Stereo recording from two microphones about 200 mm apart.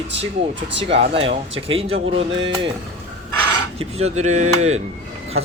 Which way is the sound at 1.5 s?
30° right (ahead or behind).